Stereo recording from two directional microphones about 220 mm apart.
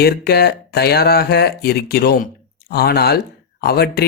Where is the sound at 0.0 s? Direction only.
45° left (ahead or behind).